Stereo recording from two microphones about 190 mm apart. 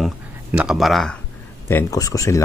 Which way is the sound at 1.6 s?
15° left (ahead or behind).